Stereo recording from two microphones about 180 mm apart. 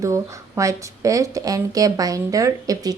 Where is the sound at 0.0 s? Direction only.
15° right (ahead or behind).